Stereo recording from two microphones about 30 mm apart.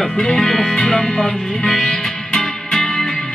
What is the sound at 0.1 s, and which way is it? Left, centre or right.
Music, centre.